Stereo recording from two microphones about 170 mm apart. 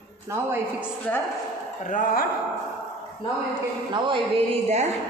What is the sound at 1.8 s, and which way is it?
Speech, 50° left (ahead or behind).